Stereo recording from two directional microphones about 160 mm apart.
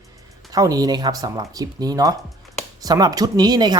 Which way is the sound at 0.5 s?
20° right (ahead or behind).